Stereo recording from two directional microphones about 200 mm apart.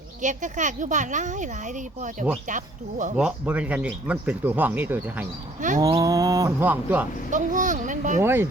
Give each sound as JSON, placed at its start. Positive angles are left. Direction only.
{"t": 0.2, "sound": "speech", "side_deg": -40}
{"t": 3.2, "sound": "speech", "side_deg": -5}
{"t": 5.5, "sound": "bird", "side_deg": -40}
{"t": 5.8, "sound": "speech", "side_deg": -15}
{"t": 7.3, "sound": "speech", "side_deg": -40}
{"t": 8.2, "sound": "speech", "side_deg": -10}